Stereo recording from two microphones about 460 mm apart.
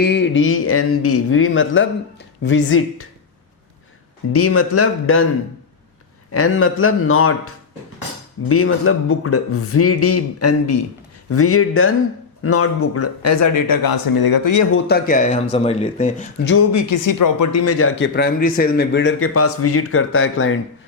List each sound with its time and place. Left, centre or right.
0.0 s speech: left
4.3 s speech: left
6.3 s speech: left
14.8 s speech: centre
16.7 s speech: left